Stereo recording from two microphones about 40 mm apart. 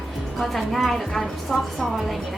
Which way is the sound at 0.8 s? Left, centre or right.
Centre.